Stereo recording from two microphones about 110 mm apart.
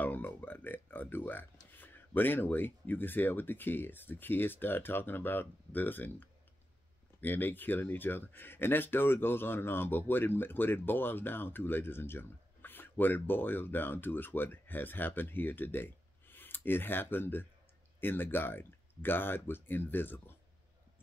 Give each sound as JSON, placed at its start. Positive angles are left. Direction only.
{"t": 0.0, "sound": "speech", "side_deg": 15}